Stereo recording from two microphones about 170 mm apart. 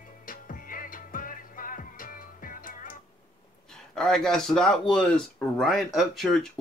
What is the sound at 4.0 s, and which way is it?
Speech, 5° left (ahead or behind).